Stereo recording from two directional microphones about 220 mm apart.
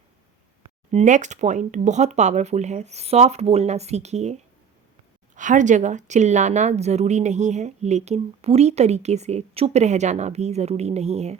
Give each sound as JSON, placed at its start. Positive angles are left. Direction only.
{"t": 0.6, "sound": "speech", "side_deg": -30}